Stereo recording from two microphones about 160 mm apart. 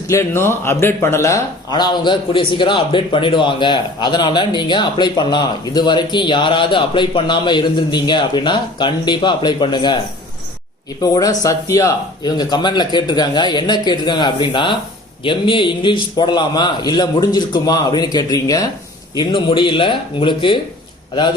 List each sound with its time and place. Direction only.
0.1 s speech: 15° left (ahead or behind)
11.0 s speech: 25° left (ahead or behind)